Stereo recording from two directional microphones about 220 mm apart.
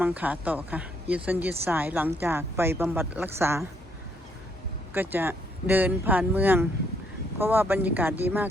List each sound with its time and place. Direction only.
0.0 s speech: 5° right (ahead or behind)
4.9 s speech: 10° right (ahead or behind)